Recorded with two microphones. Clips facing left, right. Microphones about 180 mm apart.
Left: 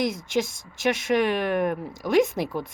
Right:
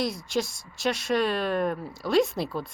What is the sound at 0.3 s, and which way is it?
A woman's voice, 20° left (ahead or behind).